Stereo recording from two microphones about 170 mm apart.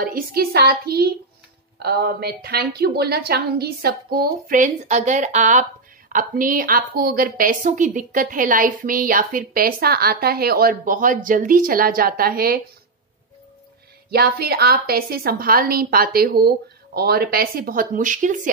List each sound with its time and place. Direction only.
0.0 s a woman's voice: 60° right (ahead or behind)
14.1 s a woman's voice: 65° right (ahead or behind); by 18.5 s 50° right (ahead or behind)